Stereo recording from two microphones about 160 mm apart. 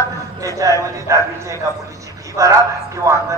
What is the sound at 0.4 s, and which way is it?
A man's voice, 20° right (ahead or behind).